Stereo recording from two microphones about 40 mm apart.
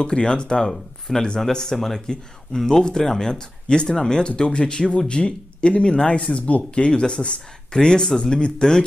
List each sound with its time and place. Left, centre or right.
0.0 s speech: left
0.6 s speech: centre